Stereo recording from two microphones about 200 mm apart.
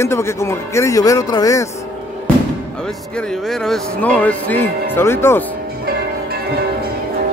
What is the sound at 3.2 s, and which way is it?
Speech, 5° left (ahead or behind).